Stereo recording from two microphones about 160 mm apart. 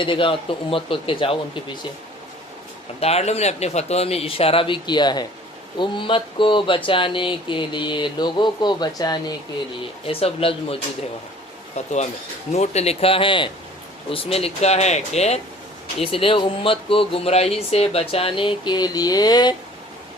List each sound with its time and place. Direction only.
0.0 s speech: 30° left (ahead or behind)
3.0 s speech: 40° left (ahead or behind); by 9.3 s 25° left (ahead or behind)
10.1 s speech: 35° left (ahead or behind)
12.5 s speech: 40° left (ahead or behind); by 19.5 s 25° left (ahead or behind)